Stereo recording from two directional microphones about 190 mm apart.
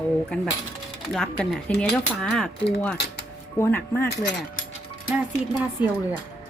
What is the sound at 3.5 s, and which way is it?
Speech, 10° left (ahead or behind).